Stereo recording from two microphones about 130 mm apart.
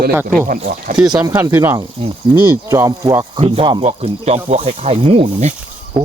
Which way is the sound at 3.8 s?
50° right (ahead or behind).